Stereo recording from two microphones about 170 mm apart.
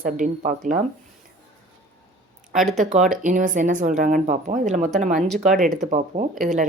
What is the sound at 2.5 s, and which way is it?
Speech, 45° right (ahead or behind).